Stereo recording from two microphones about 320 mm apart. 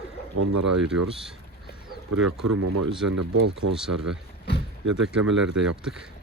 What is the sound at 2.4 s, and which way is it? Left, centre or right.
Speech, right.